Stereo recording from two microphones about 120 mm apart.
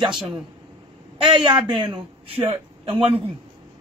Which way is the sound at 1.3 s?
40° right (ahead or behind).